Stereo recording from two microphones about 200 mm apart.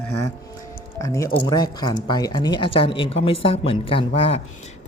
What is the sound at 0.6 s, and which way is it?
Music, 15° left (ahead or behind).